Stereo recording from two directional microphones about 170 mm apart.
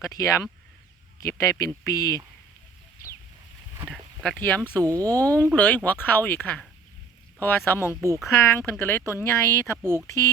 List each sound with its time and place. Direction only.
0.2 s speech: 20° left (ahead or behind)
4.2 s speech: 5° left (ahead or behind)
4.8 s speech: 20° right (ahead or behind)
5.2 s speech: 10° left (ahead or behind)
9.8 s speech: 15° right (ahead or behind)